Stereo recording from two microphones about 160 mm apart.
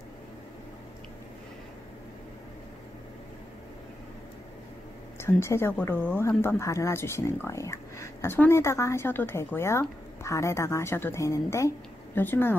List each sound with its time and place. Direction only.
5.2 s a woman's voice: 15° left (ahead or behind)